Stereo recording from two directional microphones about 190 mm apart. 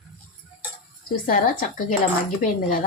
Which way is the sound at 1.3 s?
45° left (ahead or behind).